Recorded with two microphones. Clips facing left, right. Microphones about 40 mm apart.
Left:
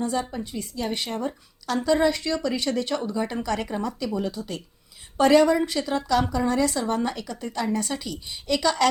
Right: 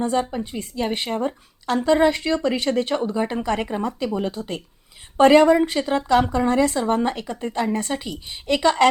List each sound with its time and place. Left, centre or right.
0.0 s a woman's voice: right